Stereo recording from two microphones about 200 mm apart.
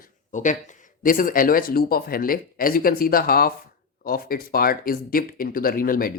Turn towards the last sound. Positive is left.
turn(degrees=45)  # may be behind; listen again after turning